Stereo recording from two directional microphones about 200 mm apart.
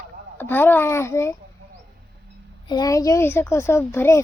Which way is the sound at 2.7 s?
20° left (ahead or behind).